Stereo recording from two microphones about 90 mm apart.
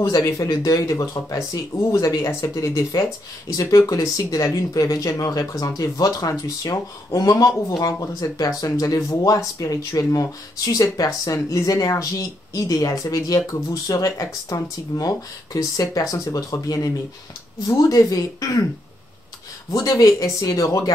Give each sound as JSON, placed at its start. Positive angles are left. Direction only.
{"t": 0.0, "sound": "speech", "side_deg": 40}
{"t": 19.7, "sound": "speech", "side_deg": 40}